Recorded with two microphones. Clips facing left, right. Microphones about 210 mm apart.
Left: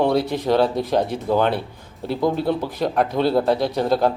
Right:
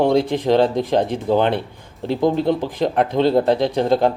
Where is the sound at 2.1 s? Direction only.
20° right (ahead or behind).